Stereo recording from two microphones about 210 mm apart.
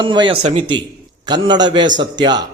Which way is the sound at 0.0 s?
20° right (ahead or behind).